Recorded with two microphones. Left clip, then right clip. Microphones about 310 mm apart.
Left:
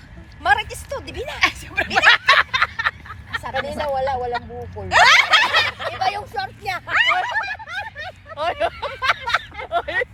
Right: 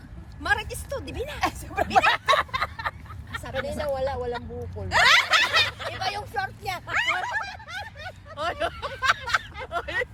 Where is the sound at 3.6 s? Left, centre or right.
Centre.